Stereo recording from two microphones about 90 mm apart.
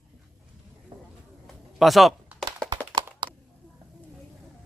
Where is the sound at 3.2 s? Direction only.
65° right (ahead or behind).